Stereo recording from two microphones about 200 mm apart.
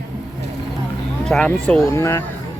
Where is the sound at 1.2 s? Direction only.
5° left (ahead or behind).